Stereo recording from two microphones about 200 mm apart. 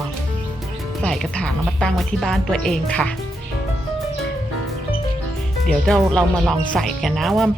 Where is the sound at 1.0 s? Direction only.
5° left (ahead or behind).